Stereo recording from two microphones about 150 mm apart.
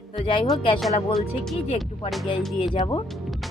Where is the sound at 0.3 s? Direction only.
35° left (ahead or behind).